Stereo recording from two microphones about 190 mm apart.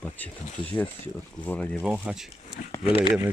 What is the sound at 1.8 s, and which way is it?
Speech, 5° right (ahead or behind).